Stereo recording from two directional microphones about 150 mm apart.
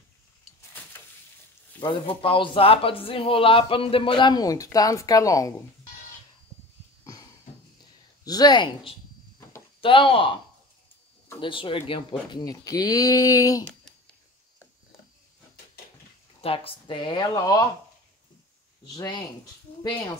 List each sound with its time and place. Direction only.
1.8 s a man's voice: 35° left (ahead or behind)
8.2 s speech: 25° left (ahead or behind)
11.4 s speech: 35° left (ahead or behind)
16.3 s a man's voice: 40° left (ahead or behind)
18.9 s speech: 30° left (ahead or behind)